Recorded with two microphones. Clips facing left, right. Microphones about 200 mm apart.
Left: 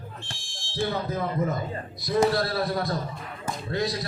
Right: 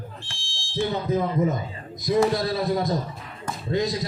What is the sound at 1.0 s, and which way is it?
A man's voice, 20° right (ahead or behind).